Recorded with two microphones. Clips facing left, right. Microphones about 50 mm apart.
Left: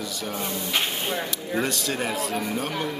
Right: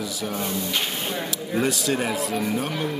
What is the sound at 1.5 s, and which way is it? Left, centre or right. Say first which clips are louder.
Speech: right 3 dB; centre.